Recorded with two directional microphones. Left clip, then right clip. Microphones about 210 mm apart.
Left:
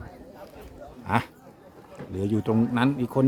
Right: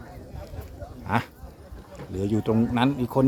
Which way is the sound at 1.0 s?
Centre (ahead or behind).